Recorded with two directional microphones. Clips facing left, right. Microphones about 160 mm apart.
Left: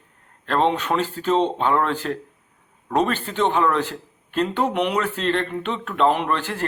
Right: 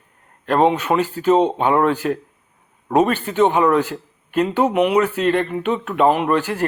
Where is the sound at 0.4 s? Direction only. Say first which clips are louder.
Right 4 dB; 10° right (ahead or behind).